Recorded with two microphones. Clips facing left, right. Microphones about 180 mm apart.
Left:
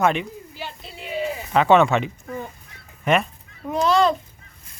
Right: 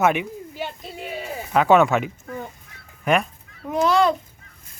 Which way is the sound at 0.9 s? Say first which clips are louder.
Right 5 dB; 45° right (ahead or behind).